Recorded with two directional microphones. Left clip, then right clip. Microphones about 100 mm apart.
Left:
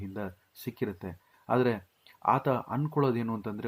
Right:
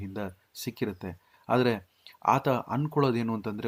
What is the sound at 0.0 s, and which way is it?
Speech, 25° right (ahead or behind).